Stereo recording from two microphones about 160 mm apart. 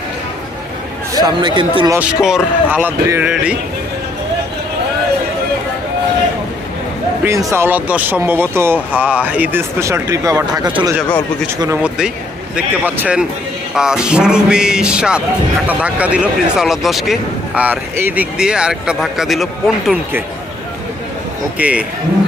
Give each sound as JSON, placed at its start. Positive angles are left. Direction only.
{"t": 1.1, "sound": "speech", "side_deg": -25}
{"t": 1.9, "sound": "speech", "side_deg": -10}
{"t": 7.3, "sound": "speech", "side_deg": -15}
{"t": 11.8, "sound": "speech", "side_deg": -5}
{"t": 21.6, "sound": "speech", "side_deg": -10}